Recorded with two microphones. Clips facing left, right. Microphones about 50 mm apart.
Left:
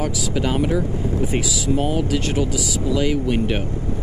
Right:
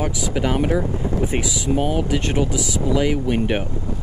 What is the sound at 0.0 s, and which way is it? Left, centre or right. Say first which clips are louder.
Speech: even; right.